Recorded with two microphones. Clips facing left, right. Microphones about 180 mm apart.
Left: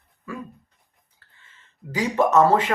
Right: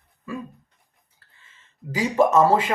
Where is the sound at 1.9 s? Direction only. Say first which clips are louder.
Right 1 dB; 5° right (ahead or behind).